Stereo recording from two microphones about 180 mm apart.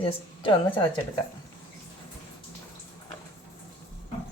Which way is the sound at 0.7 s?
10° left (ahead or behind).